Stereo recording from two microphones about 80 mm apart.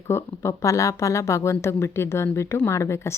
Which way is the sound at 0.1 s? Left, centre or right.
Left.